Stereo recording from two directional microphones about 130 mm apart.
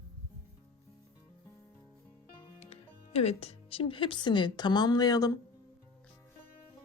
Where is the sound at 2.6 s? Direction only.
55° left (ahead or behind); by 5.3 s 30° left (ahead or behind).